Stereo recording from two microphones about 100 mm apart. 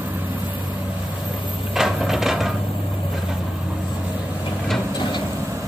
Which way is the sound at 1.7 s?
5° right (ahead or behind).